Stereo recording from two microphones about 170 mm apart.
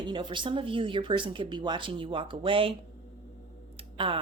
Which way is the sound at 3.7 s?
30° right (ahead or behind).